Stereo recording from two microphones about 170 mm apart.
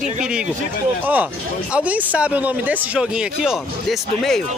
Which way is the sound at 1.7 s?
10° right (ahead or behind).